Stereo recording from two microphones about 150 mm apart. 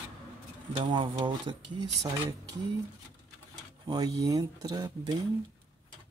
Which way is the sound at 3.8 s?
25° right (ahead or behind).